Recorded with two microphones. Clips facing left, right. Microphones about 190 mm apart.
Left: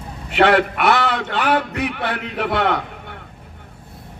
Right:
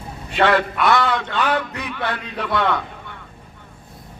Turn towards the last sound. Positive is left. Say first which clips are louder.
# left 1 dB
turn(degrees=60)  # may be behind; listen again after turning